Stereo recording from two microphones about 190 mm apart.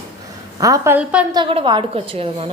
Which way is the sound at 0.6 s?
15° right (ahead or behind).